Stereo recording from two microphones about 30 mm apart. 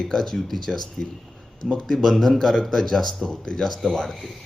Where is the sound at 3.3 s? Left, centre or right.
Left.